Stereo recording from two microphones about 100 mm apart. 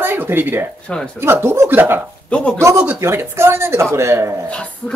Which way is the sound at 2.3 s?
10° left (ahead or behind).